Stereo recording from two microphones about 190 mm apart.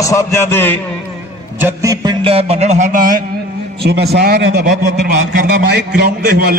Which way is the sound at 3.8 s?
60° right (ahead or behind).